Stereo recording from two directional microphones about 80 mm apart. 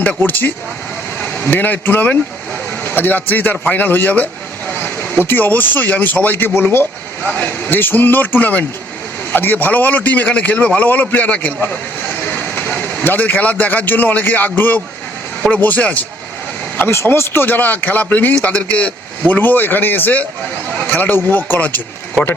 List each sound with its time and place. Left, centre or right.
0.0 s a man's voice: left
16.9 s a man's voice: left